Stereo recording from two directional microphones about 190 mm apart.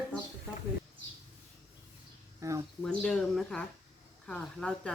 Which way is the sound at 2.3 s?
15° right (ahead or behind).